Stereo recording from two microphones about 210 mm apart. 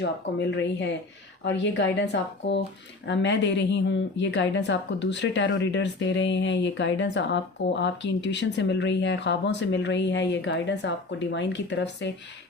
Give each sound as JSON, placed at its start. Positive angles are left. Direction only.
{"t": 0.0, "sound": "a woman's voice", "side_deg": 55}